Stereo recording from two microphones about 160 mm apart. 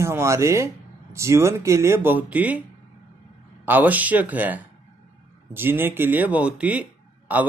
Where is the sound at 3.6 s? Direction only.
10° right (ahead or behind).